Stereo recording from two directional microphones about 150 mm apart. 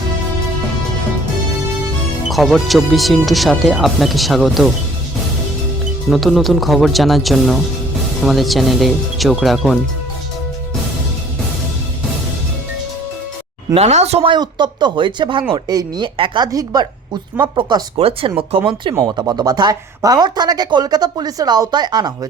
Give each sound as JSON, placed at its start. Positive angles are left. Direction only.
{"t": 2.2, "sound": "speech", "side_deg": 0}
{"t": 6.1, "sound": "speech", "side_deg": 0}
{"t": 13.7, "sound": "speech", "side_deg": -45}
{"t": 14.3, "sound": "speech", "side_deg": -30}
{"t": 17.9, "sound": "speech", "side_deg": -40}
{"t": 18.9, "sound": "speech", "side_deg": -25}